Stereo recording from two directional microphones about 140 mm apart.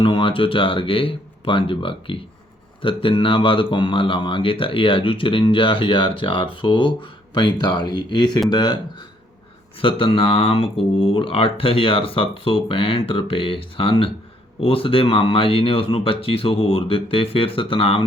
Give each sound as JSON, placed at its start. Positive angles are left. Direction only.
{"t": 0.0, "sound": "speech", "side_deg": 40}
{"t": 9.8, "sound": "speech", "side_deg": 40}